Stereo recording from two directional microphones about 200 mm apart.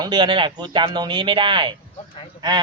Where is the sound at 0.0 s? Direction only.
20° right (ahead or behind).